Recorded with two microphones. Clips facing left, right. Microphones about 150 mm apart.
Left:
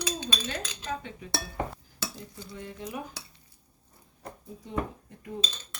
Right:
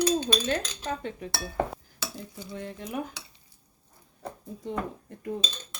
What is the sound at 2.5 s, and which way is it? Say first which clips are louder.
Speech: right 3 dB; 65° right (ahead or behind).